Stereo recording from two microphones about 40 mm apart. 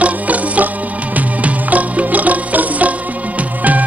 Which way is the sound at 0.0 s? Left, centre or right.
Right.